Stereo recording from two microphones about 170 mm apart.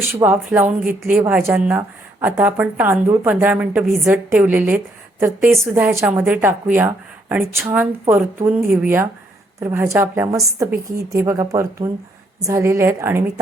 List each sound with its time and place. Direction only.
0.2 s a woman's voice: 10° right (ahead or behind)